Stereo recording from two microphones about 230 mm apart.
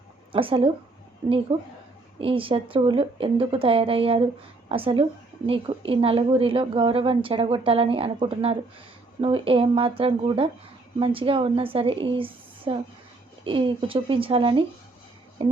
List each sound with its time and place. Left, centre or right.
0.3 s speech: right
15.4 s music: right